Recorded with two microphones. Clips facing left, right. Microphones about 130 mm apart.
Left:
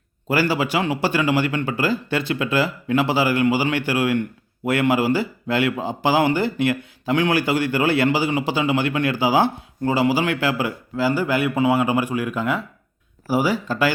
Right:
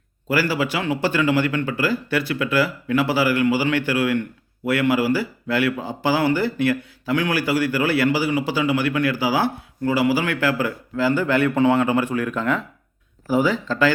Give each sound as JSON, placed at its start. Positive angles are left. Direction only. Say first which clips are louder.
{"t": 0.3, "sound": "speech", "louder": "left 1 dB", "side_deg": 20}